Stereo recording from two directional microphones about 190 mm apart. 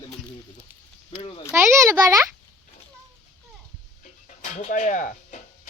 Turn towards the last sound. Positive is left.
turn(degrees=40)  # may be behind; listen again after turning